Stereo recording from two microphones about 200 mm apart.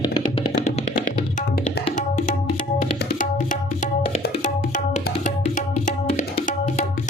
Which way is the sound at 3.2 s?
40° left (ahead or behind).